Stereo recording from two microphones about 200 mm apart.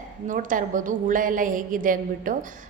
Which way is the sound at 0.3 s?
40° right (ahead or behind).